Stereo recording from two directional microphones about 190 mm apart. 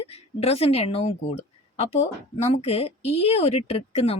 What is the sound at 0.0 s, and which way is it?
A woman's voice, 35° left (ahead or behind).